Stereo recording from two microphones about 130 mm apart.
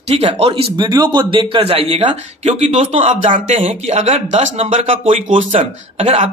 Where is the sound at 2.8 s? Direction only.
65° right (ahead or behind).